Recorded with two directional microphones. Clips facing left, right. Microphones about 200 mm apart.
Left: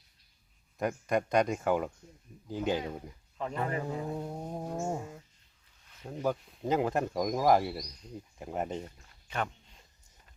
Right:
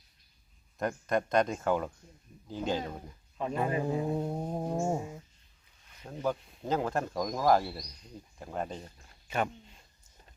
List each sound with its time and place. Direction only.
0.8 s speech: 10° left (ahead or behind)
3.3 s speech: 20° right (ahead or behind)
6.0 s speech: 10° left (ahead or behind)
9.2 s a man's voice: 10° right (ahead or behind)